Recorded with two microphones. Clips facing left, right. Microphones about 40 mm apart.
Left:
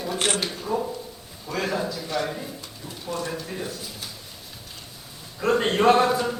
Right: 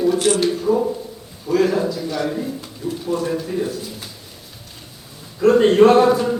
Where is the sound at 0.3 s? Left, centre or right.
Centre.